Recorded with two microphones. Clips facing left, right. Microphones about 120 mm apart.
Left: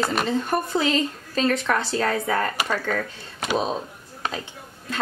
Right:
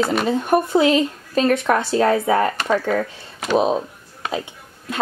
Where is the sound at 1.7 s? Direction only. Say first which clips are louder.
Right 6 dB; 25° right (ahead or behind).